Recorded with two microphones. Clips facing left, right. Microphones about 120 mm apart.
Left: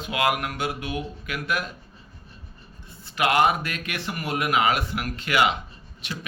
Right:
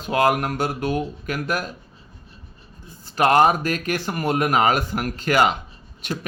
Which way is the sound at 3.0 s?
40° right (ahead or behind).